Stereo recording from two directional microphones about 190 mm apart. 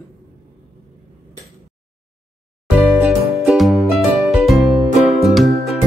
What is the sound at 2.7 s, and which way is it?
Music, 5° right (ahead or behind).